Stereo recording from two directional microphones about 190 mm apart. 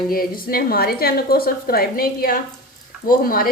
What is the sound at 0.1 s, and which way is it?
A woman's voice, 50° left (ahead or behind).